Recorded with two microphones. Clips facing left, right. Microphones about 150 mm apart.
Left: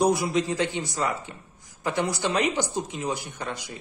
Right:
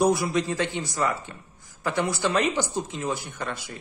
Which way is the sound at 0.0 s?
20° left (ahead or behind).